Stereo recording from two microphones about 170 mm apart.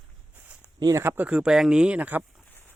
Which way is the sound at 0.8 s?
20° right (ahead or behind).